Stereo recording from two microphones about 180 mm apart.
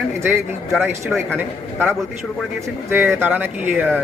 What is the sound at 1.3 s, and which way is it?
Speech, 10° right (ahead or behind).